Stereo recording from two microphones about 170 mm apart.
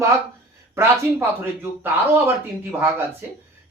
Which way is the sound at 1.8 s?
15° right (ahead or behind).